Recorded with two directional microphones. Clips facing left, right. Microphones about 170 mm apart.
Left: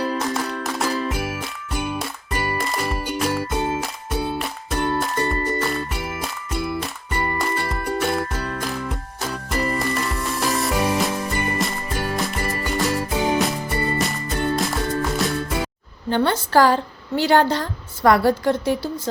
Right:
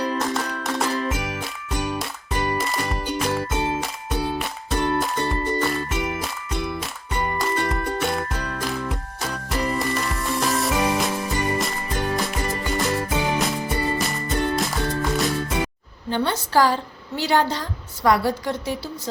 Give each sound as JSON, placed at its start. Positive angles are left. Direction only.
{"t": 0.0, "sound": "music", "side_deg": 5}
{"t": 16.0, "sound": "a sound", "side_deg": 60}
{"t": 17.2, "sound": "a woman's voice", "side_deg": 55}